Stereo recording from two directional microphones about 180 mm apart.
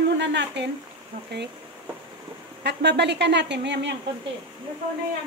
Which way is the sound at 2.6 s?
70° right (ahead or behind).